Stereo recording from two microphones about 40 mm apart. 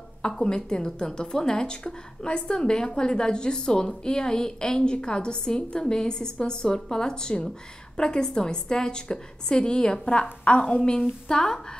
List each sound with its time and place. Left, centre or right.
0.4 s a woman's voice: left